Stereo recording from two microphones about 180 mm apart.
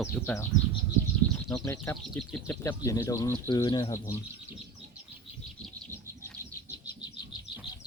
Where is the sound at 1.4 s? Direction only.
15° left (ahead or behind).